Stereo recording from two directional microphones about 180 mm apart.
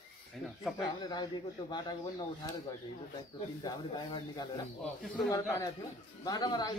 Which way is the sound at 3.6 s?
25° left (ahead or behind).